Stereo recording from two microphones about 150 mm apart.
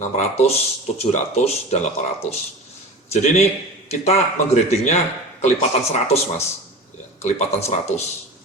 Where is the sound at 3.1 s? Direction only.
45° left (ahead or behind).